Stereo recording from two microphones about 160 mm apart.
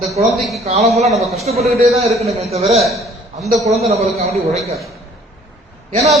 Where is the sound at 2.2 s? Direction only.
40° right (ahead or behind).